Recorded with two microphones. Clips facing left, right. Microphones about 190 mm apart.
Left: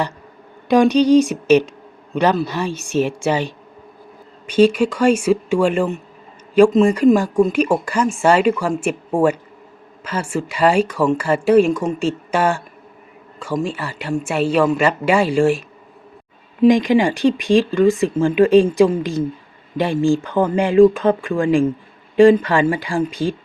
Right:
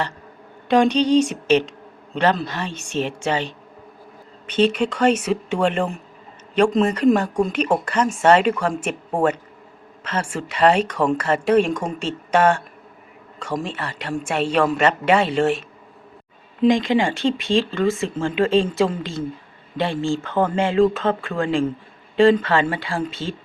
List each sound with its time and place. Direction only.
0.7 s speech: 10° left (ahead or behind)
4.5 s speech: 10° left (ahead or behind)
10.0 s speech: 10° left (ahead or behind)
16.6 s speech: 15° left (ahead or behind)